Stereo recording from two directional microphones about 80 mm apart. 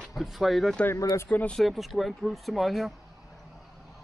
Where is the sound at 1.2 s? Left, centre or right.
Left.